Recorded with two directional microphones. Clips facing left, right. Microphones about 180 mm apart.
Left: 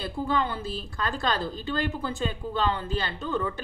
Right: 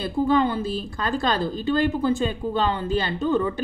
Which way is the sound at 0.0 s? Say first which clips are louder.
Right 7 dB; 15° right (ahead or behind).